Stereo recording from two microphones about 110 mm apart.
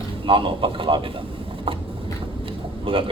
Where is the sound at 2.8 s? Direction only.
55° right (ahead or behind).